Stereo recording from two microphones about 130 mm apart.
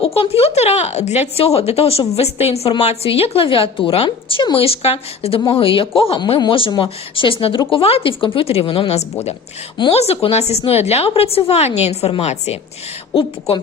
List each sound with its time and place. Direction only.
0.0 s speech: 50° left (ahead or behind)